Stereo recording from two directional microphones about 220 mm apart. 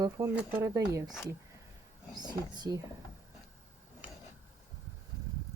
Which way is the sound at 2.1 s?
20° right (ahead or behind).